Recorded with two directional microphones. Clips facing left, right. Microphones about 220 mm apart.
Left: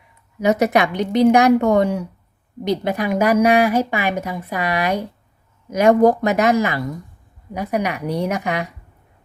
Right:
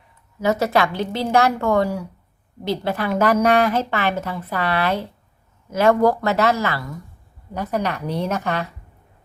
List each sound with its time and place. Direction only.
0.3 s a woman's voice: 20° left (ahead or behind)